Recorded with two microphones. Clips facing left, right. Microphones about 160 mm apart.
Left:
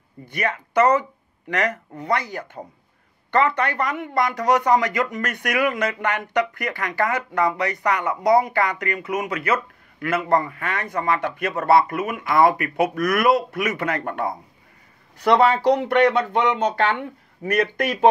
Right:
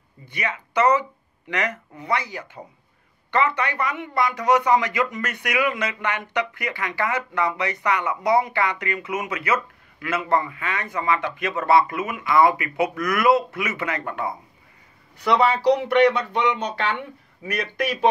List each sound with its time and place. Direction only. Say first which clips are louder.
0.2 s speech: left 4 dB; 50° left (ahead or behind)